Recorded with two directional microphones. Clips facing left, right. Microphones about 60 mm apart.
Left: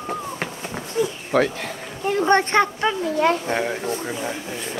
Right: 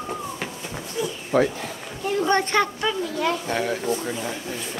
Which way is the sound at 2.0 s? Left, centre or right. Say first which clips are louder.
Left 3 dB; left.